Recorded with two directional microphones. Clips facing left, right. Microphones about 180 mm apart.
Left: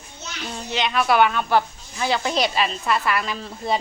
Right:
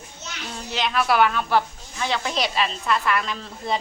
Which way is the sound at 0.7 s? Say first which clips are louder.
Left 2 dB; centre (ahead or behind).